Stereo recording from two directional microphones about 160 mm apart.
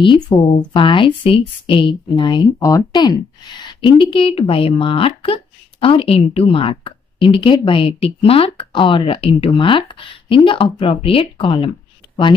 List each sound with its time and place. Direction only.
0.0 s speech: 30° left (ahead or behind)